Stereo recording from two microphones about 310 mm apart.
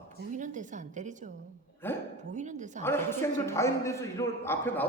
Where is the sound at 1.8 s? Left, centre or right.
Centre.